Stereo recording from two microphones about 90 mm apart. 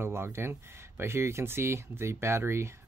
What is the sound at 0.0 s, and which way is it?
Speech, 30° right (ahead or behind).